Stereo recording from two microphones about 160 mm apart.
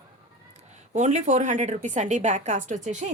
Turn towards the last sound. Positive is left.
turn(degrees=-45)  # may be behind; listen again after turning